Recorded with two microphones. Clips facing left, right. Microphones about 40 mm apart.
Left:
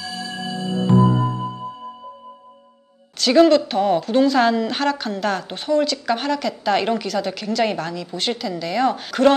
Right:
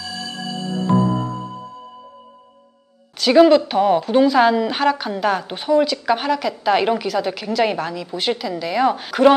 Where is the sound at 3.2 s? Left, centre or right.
Centre.